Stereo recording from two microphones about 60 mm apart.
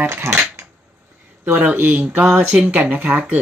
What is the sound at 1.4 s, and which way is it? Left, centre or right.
Speech, right.